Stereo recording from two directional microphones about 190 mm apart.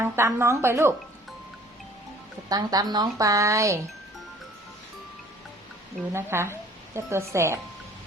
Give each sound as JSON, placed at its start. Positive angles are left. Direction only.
{"t": 0.0, "sound": "speech", "side_deg": -15}
{"t": 2.5, "sound": "a woman's voice", "side_deg": -20}
{"t": 6.1, "sound": "a woman's voice", "side_deg": -15}